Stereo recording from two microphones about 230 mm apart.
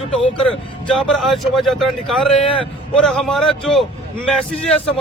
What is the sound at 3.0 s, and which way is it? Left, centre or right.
Speech, centre.